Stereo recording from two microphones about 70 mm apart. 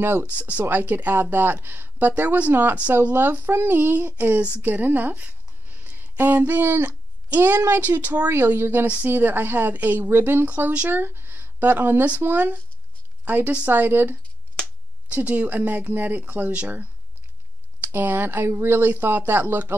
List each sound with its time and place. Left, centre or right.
0.2 s speech: right